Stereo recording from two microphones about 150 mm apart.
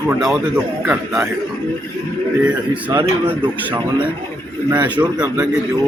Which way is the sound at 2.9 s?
20° right (ahead or behind).